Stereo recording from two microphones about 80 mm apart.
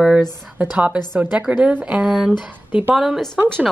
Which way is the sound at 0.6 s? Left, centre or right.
Centre.